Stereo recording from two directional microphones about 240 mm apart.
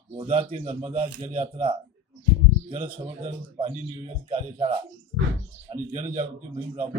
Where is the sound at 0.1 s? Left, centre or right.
Right.